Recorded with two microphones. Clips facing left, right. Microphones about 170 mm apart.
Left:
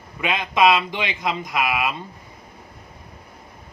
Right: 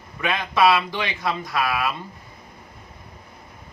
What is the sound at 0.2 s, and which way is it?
Speech, 15° left (ahead or behind).